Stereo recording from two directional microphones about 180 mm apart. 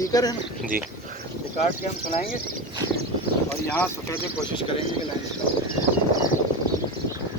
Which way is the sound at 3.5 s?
10° left (ahead or behind).